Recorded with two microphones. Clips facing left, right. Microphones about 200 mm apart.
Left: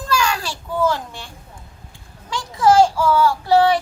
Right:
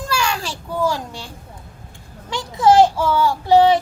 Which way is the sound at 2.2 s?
20° right (ahead or behind).